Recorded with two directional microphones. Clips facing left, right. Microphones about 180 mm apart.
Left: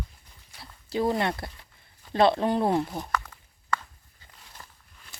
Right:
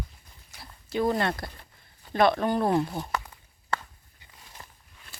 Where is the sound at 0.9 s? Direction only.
25° left (ahead or behind).